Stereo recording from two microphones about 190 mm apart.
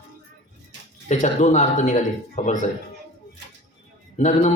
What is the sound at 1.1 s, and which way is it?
A man's voice, 40° left (ahead or behind).